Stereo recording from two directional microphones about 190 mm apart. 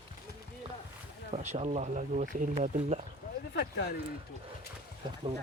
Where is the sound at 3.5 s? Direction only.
65° left (ahead or behind).